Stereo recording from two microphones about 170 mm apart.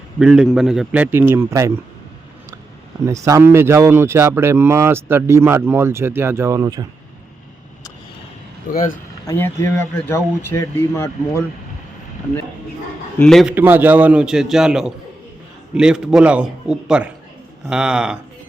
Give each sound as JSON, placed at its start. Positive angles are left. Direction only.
{"t": 0.2, "sound": "speech", "side_deg": -5}
{"t": 3.1, "sound": "speech", "side_deg": -20}
{"t": 8.7, "sound": "speech", "side_deg": 55}
{"t": 9.2, "sound": "speech", "side_deg": 15}
{"t": 13.1, "sound": "a man's voice", "side_deg": 5}
{"t": 13.6, "sound": "a man's voice", "side_deg": -10}